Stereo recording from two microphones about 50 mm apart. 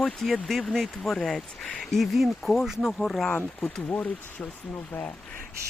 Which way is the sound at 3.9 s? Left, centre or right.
Left.